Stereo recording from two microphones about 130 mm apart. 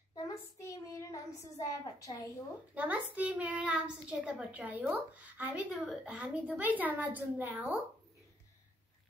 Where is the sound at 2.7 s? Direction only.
10° right (ahead or behind).